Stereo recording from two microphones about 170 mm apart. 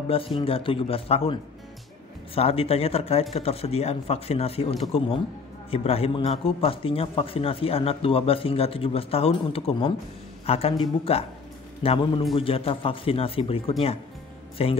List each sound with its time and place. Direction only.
0.1 s a man's voice: 35° left (ahead or behind)